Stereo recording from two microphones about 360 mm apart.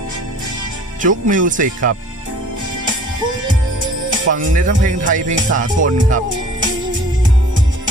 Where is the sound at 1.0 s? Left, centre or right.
Right.